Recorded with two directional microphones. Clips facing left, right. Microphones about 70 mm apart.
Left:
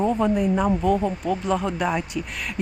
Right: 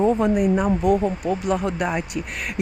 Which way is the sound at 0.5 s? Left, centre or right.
Centre.